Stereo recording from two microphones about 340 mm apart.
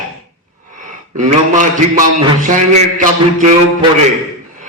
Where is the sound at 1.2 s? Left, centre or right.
Right.